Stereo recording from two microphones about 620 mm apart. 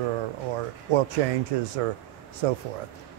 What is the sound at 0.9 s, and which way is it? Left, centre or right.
Speech, right.